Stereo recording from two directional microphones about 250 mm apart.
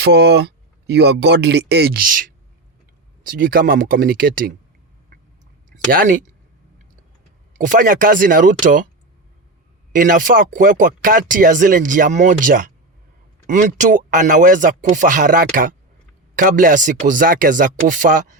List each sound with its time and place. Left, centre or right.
0.0 s speech: right
5.7 s speech: right
7.6 s speech: right
9.9 s speech: right